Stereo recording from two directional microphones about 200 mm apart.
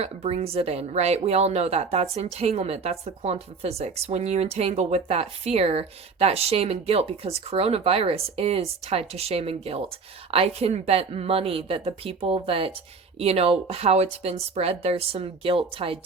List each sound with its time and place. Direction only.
0.0 s a woman's voice: 30° right (ahead or behind)